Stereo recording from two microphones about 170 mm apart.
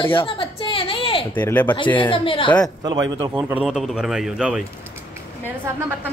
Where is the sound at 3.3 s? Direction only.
10° right (ahead or behind).